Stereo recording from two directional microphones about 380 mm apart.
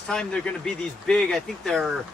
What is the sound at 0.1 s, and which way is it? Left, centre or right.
Speech, centre.